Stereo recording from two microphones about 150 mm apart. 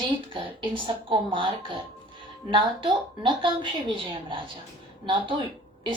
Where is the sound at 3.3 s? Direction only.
35° right (ahead or behind).